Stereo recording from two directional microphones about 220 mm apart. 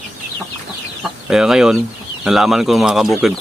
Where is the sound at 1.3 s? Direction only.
Centre (ahead or behind).